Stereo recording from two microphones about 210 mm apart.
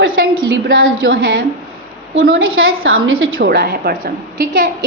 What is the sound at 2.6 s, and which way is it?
Speech, 70° right (ahead or behind).